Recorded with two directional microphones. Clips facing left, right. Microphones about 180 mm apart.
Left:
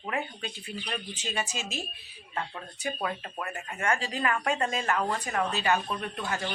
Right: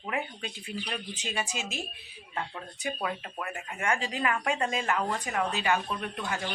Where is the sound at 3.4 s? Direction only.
15° right (ahead or behind).